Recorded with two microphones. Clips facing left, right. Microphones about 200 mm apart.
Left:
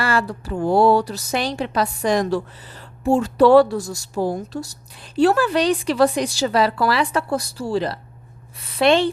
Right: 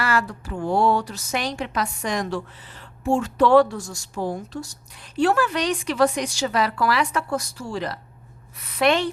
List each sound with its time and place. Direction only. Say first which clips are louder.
0.0 s a woman's voice: left 2 dB; 30° left (ahead or behind)